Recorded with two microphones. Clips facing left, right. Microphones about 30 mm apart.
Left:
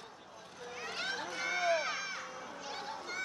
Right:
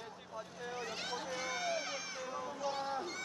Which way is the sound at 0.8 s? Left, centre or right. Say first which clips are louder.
Left 4 dB; centre.